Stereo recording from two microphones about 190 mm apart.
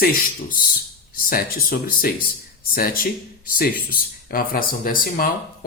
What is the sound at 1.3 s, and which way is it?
Speech, 50° left (ahead or behind).